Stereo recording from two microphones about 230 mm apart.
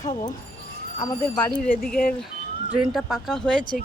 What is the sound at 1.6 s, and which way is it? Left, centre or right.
Speech, left.